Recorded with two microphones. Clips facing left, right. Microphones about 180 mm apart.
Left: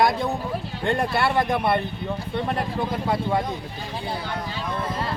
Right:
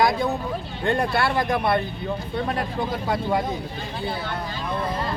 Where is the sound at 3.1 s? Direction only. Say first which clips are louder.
Even; centre (ahead or behind).